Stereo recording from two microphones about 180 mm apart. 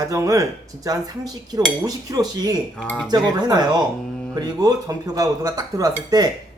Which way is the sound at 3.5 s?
20° right (ahead or behind).